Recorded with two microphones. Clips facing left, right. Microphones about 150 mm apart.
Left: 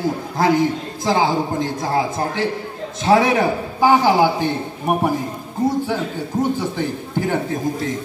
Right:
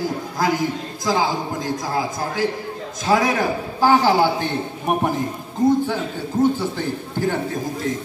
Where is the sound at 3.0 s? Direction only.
25° left (ahead or behind).